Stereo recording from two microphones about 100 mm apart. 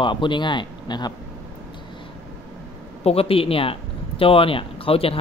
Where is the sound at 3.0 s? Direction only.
85° left.